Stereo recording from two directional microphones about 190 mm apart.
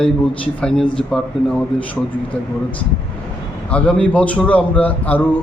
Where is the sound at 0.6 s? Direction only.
5° left (ahead or behind).